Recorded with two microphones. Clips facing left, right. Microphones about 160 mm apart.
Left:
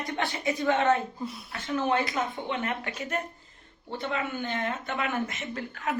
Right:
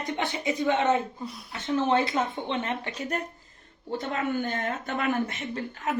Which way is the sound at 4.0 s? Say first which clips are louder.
Right 2 dB; 45° right (ahead or behind).